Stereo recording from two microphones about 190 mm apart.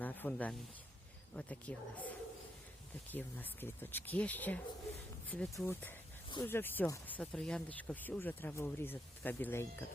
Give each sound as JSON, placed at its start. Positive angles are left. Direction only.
{"t": 0.0, "sound": "speech", "side_deg": 10}